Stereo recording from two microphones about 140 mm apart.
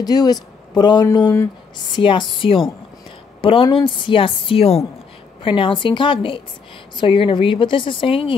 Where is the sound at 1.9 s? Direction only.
35° left (ahead or behind).